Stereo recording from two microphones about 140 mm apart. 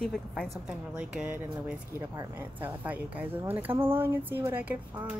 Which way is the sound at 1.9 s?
25° right (ahead or behind).